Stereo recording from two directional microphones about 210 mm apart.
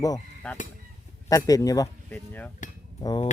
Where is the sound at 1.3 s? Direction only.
15° left (ahead or behind).